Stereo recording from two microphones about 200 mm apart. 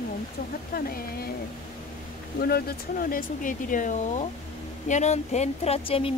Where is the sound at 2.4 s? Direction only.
50° left (ahead or behind).